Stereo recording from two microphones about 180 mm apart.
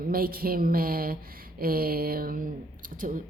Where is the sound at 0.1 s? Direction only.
55° right (ahead or behind).